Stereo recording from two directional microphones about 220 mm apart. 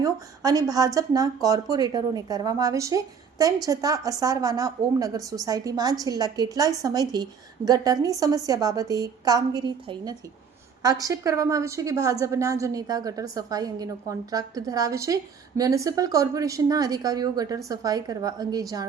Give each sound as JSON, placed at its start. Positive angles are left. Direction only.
{"t": 0.0, "sound": "a woman's voice", "side_deg": -15}